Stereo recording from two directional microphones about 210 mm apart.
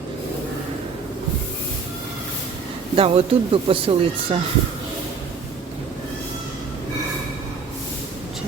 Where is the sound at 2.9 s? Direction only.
25° right (ahead or behind).